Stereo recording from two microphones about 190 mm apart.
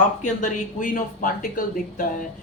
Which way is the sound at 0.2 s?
45° left (ahead or behind).